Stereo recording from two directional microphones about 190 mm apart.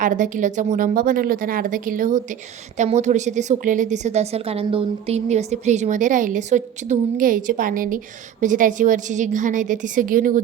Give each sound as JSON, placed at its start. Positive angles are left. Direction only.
{"t": 0.0, "sound": "a woman's voice", "side_deg": -40}